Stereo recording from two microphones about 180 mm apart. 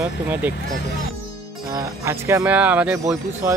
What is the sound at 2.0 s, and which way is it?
Speech, 15° right (ahead or behind).